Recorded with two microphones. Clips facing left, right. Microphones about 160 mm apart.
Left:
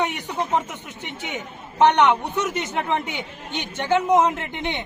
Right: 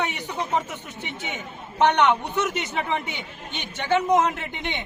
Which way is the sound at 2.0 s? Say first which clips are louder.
Left 2 dB; 15° left (ahead or behind).